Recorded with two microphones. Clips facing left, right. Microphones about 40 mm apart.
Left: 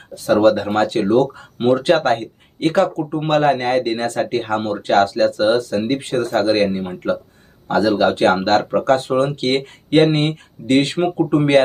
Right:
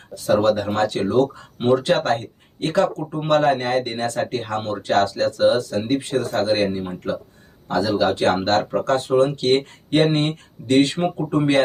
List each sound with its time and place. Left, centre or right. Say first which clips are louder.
0.3 s speech: left 4 dB; left
9.1 s speech: right 1 dB; left